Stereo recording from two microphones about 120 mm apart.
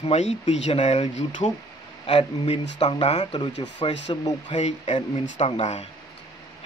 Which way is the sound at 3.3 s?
40° left (ahead or behind).